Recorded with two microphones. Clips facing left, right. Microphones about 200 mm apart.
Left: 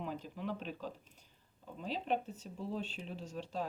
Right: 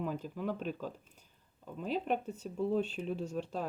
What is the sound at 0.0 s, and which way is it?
Speech, 45° right (ahead or behind).